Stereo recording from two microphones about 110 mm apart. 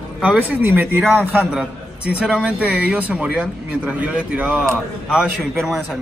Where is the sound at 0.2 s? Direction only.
15° right (ahead or behind).